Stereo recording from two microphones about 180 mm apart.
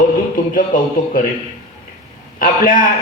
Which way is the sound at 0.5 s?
50° left (ahead or behind).